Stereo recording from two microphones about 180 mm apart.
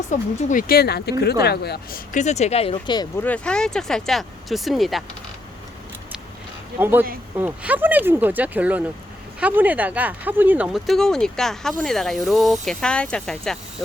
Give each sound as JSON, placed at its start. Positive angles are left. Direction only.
{"t": 0.1, "sound": "speech", "side_deg": 50}
{"t": 2.1, "sound": "speech", "side_deg": 40}
{"t": 3.2, "sound": "speech", "side_deg": 10}
{"t": 6.7, "sound": "speech", "side_deg": -10}